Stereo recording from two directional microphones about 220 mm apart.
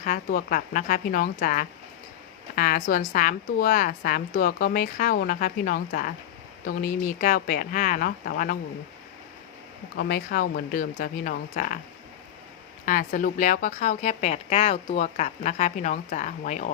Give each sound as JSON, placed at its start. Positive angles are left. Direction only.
{"t": 0.0, "sound": "a woman's voice", "side_deg": 40}
{"t": 10.0, "sound": "a woman's voice", "side_deg": 45}
{"t": 12.8, "sound": "a woman's voice", "side_deg": 40}